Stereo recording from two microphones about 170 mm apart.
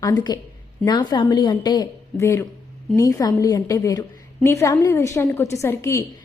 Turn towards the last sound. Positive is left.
turn(degrees=15)  # may be behind; listen again after turning